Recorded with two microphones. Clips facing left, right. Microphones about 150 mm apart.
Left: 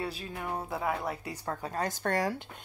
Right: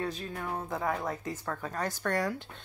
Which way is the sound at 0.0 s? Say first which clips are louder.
Right 1 dB; 10° left (ahead or behind).